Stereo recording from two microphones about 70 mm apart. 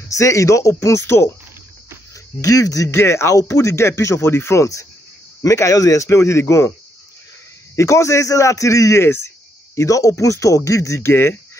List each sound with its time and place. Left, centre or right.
0.1 s a man's voice: left
2.4 s speech: left
2.9 s speech: left
5.4 s a man's voice: left
6.0 s a man's voice: left
7.7 s a man's voice: left
9.0 s speech: left
9.8 s a man's voice: left
11.0 s speech: left